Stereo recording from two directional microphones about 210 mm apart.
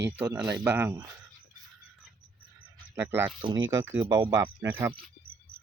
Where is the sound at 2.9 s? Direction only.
10° right (ahead or behind).